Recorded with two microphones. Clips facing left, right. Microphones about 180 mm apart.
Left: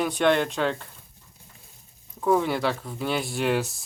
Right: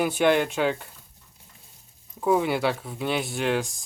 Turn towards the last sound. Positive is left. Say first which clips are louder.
# left 1 dB
turn(degrees=5)  # may be behind; listen again after turning